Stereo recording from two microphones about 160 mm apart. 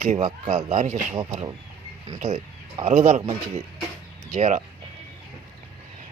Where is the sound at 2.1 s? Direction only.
45° right (ahead or behind).